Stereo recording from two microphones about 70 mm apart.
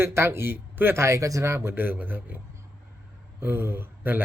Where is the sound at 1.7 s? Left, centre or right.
Right.